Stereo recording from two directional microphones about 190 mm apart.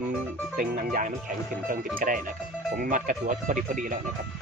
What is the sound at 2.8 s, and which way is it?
Speech, 45° right (ahead or behind).